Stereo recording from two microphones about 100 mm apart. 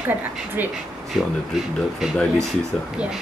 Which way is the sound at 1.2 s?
5° right (ahead or behind).